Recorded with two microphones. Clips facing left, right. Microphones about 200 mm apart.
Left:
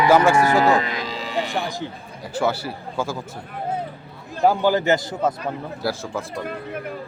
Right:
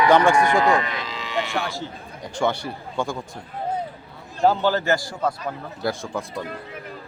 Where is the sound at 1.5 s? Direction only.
15° left (ahead or behind).